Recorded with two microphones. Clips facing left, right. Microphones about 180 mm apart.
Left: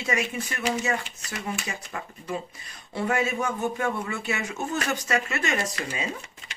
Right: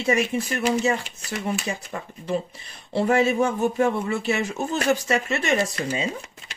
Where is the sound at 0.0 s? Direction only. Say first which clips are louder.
Right 6 dB; 30° right (ahead or behind).